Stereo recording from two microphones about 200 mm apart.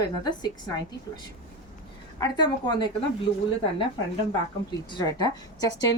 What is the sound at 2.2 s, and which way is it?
Speech, 20° left (ahead or behind).